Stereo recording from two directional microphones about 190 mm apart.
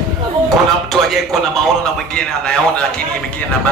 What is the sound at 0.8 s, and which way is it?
A man's voice, centre (ahead or behind).